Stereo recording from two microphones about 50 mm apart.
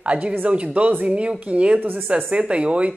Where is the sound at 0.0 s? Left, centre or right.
Right.